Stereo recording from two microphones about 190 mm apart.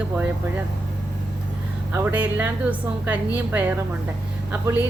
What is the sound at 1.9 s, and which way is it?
Speech, 15° right (ahead or behind).